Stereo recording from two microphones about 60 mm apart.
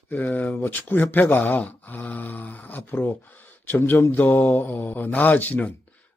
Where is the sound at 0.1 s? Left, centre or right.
Left.